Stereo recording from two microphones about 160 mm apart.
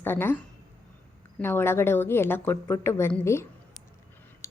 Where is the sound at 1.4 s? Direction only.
15° left (ahead or behind).